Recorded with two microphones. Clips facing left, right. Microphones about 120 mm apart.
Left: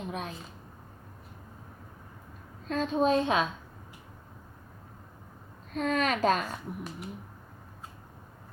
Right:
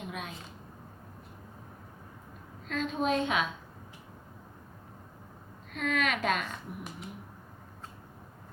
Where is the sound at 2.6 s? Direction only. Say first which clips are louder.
Left 4 dB; 35° left (ahead or behind).